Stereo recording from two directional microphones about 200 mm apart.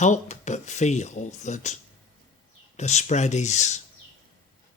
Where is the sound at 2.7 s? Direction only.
35° left (ahead or behind).